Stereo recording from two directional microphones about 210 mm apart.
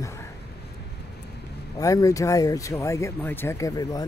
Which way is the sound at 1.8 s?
15° left (ahead or behind).